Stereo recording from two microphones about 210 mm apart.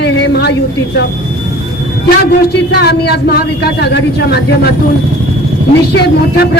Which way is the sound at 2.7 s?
50° left (ahead or behind).